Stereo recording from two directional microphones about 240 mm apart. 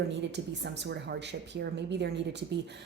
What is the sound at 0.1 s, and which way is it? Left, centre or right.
Speech, right.